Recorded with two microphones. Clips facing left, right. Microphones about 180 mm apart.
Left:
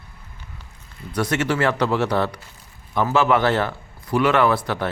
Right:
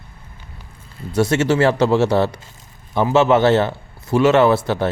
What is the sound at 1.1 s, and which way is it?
A man's voice, 25° right (ahead or behind).